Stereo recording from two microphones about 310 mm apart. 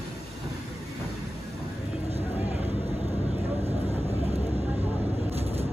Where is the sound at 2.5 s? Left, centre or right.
Centre.